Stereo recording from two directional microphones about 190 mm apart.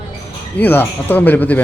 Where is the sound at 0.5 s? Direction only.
10° left (ahead or behind).